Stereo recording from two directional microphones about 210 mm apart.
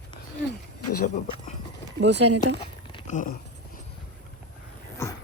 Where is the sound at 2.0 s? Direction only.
55° right (ahead or behind).